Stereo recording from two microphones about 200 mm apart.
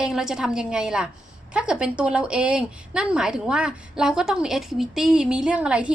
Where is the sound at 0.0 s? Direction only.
5° right (ahead or behind).